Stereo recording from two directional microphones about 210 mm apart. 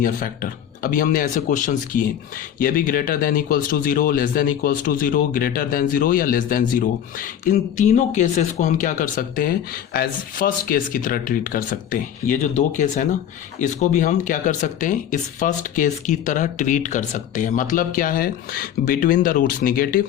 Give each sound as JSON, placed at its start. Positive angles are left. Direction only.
{"t": 0.8, "sound": "speech", "side_deg": 40}